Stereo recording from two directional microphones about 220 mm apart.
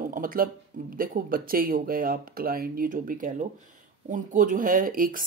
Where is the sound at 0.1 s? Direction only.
40° right (ahead or behind).